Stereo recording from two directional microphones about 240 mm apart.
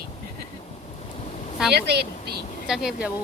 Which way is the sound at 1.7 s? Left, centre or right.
Right.